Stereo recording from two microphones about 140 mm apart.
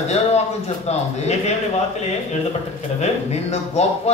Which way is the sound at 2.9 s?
50° left (ahead or behind).